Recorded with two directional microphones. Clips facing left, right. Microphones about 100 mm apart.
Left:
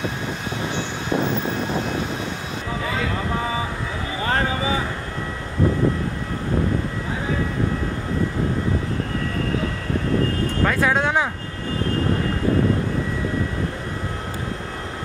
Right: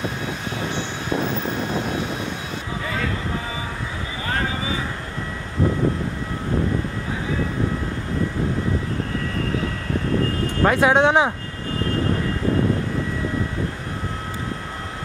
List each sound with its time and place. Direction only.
10.6 s speech: 20° right (ahead or behind)